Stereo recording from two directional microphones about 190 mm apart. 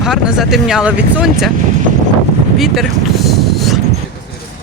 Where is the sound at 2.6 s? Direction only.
Centre (ahead or behind).